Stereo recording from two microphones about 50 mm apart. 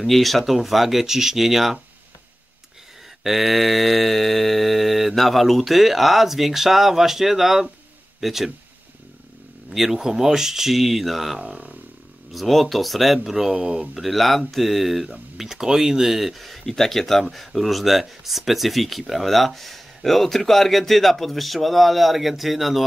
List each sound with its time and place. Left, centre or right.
0.0 s speech: centre
3.3 s speech: centre
9.7 s speech: centre
11.3 s speech: centre
12.3 s speech: centre
13.9 s speech: centre